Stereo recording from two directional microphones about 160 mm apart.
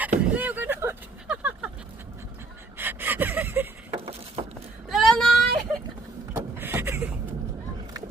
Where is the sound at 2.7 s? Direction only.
10° right (ahead or behind).